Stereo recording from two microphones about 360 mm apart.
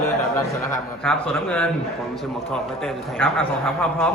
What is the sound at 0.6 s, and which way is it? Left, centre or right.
A man's voice, centre.